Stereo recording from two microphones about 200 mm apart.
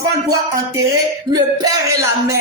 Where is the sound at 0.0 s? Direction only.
15° right (ahead or behind).